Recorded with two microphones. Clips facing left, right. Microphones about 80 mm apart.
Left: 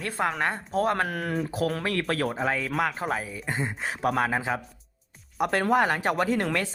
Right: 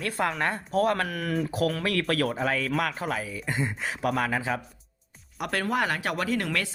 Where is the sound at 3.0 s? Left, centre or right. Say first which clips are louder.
Left 1 dB; left.